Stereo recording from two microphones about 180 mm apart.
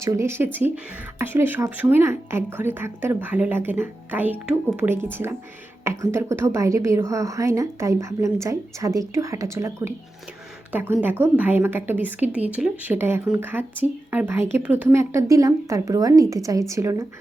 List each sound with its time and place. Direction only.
0.0 s a woman's voice: 15° right (ahead or behind)